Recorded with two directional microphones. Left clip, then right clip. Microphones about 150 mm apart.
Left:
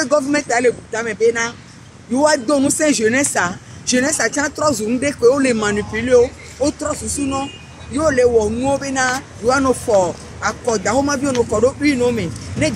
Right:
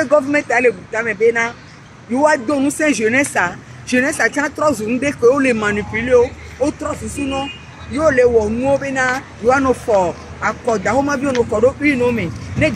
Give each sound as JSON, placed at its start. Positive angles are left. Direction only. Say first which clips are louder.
{"t": 0.0, "sound": "speech", "louder": "right 2 dB", "side_deg": 20}
{"t": 2.6, "sound": "speech", "louder": "even", "side_deg": 30}
{"t": 8.0, "sound": "speech", "louder": "right 1 dB", "side_deg": 5}